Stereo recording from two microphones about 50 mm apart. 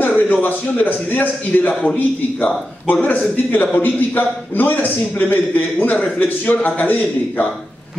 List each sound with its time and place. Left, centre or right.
0.0 s a man's voice: left
1.7 s a man's voice: centre
2.4 s a man's voice: left